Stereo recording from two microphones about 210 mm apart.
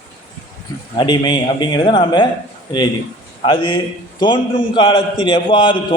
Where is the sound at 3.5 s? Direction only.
20° left (ahead or behind).